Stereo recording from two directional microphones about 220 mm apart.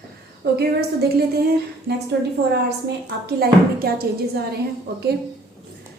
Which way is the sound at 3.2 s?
45° right (ahead or behind).